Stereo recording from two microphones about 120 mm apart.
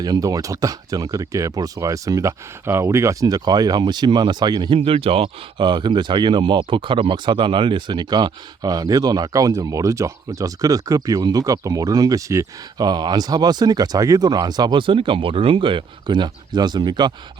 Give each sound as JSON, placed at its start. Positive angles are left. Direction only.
{"t": 0.0, "sound": "speech", "side_deg": -30}
{"t": 4.8, "sound": "speech", "side_deg": -50}